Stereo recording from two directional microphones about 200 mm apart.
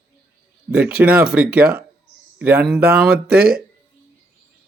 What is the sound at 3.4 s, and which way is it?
Speech, 50° right (ahead or behind).